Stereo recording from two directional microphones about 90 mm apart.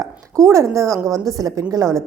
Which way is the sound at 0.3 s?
35° right (ahead or behind).